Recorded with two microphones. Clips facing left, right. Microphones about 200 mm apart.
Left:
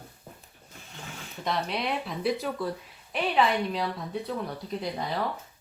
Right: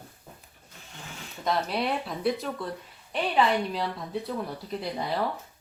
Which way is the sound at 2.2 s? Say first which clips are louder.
Left 1 dB; centre (ahead or behind).